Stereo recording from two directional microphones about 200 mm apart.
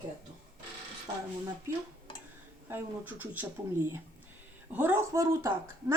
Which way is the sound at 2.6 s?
10° right (ahead or behind).